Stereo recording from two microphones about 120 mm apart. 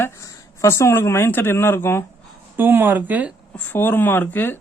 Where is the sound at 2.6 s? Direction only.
20° right (ahead or behind).